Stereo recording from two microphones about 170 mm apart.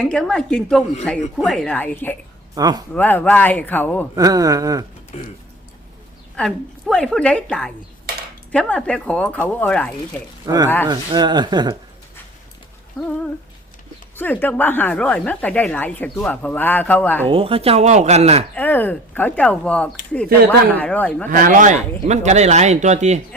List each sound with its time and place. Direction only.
0.0 s a woman's voice: 5° left (ahead or behind)
2.6 s speech: 25° right (ahead or behind)
2.9 s speech: 10° left (ahead or behind)
4.1 s speech: 20° right (ahead or behind)
5.1 s speech: 40° left (ahead or behind)
6.3 s a woman's voice: 5° left (ahead or behind)
10.4 s speech: 20° right (ahead or behind)
13.0 s a woman's voice: 5° left (ahead or behind)
17.2 s speech: 30° right (ahead or behind)
18.5 s speech: 10° left (ahead or behind)
21.2 s speech: 55° right (ahead or behind)